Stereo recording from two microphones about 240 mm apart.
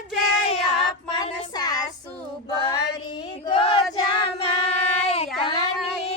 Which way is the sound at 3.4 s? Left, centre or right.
Left.